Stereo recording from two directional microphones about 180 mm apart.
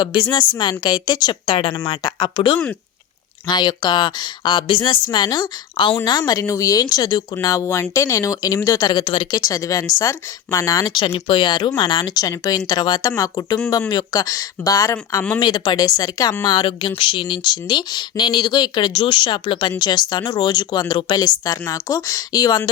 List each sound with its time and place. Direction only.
0.0 s a woman's voice: 25° left (ahead or behind)